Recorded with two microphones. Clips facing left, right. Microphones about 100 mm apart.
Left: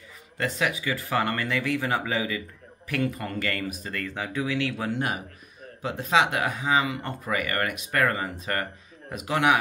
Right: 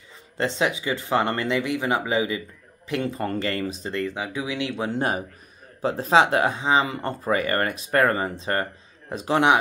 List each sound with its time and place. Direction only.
0.4 s speech: 25° right (ahead or behind)
4.9 s speech: 35° right (ahead or behind)